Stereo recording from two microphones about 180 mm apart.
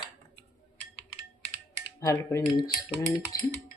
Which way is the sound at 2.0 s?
15° left (ahead or behind).